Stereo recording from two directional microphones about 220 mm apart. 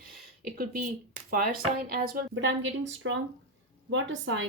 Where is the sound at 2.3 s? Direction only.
55° right (ahead or behind).